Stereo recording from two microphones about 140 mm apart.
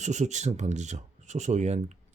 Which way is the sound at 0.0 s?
55° right (ahead or behind).